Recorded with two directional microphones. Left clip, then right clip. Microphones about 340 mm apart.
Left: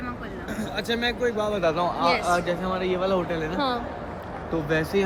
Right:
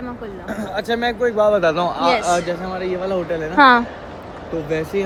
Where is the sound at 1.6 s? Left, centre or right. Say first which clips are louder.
Right 5 dB; right.